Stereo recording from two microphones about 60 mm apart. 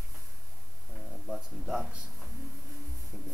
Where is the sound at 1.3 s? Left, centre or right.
Centre.